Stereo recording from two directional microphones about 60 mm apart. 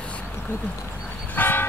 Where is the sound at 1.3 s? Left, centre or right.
Left.